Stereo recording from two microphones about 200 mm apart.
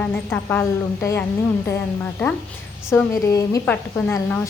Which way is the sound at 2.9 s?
15° left (ahead or behind).